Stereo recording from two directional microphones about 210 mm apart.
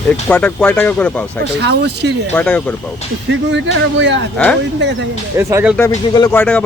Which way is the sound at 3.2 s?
60° right (ahead or behind).